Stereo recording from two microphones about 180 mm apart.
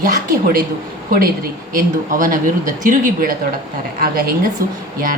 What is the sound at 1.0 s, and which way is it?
Speech, 55° right (ahead or behind).